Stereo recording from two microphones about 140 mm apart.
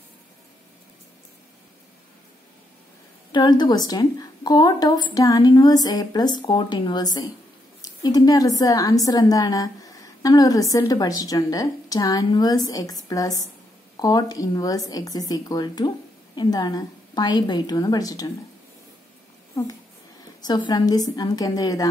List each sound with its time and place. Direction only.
3.3 s a woman's voice: 30° left (ahead or behind)
20.4 s speech: 30° left (ahead or behind)